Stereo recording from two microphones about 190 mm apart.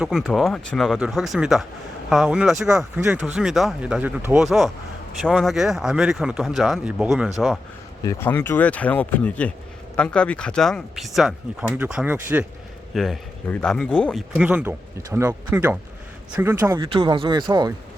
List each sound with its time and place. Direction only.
0.0 s speech: centre (ahead or behind)
8.0 s speech: 10° left (ahead or behind); by 12.5 s 10° right (ahead or behind)
12.9 s speech: centre (ahead or behind); by 17.7 s 20° right (ahead or behind)